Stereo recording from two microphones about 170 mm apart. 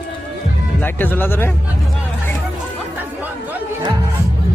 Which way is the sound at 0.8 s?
10° left (ahead or behind).